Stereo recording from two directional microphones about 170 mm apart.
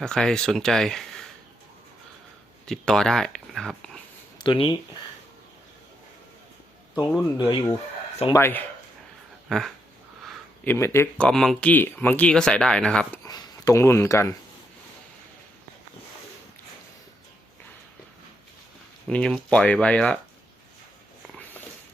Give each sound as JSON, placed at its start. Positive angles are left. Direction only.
{"t": 0.0, "sound": "speech", "side_deg": 5}
{"t": 2.6, "sound": "speech", "side_deg": 5}
{"t": 4.4, "sound": "speech", "side_deg": 30}
{"t": 7.3, "sound": "speech", "side_deg": 25}
{"t": 8.3, "sound": "speech", "side_deg": 15}
{"t": 9.5, "sound": "speech", "side_deg": 0}
{"t": 11.3, "sound": "speech", "side_deg": 5}
{"t": 13.2, "sound": "speech", "side_deg": 20}
{"t": 19.0, "sound": "speech", "side_deg": 5}